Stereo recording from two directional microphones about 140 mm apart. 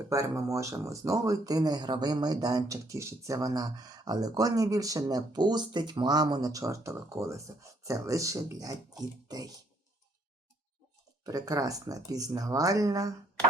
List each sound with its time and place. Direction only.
0.1 s speech: 25° right (ahead or behind)
11.2 s speech: 25° right (ahead or behind)